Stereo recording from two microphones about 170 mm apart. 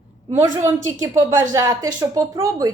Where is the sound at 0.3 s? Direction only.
15° right (ahead or behind).